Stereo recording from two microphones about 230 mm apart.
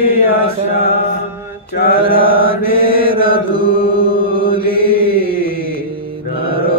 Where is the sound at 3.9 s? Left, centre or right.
Right.